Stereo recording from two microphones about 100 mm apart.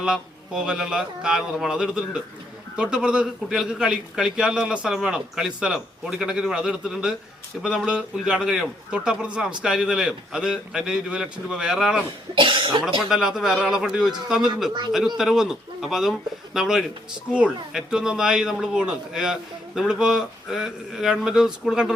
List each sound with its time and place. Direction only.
0.0 s a man's voice: 5° right (ahead or behind)
12.3 s speech: 55° right (ahead or behind)
13.0 s a man's voice: 5° right (ahead or behind)